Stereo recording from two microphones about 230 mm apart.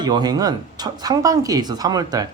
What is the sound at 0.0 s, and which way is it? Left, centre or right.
A man's voice, centre.